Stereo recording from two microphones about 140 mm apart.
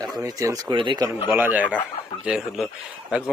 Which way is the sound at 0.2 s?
20° right (ahead or behind).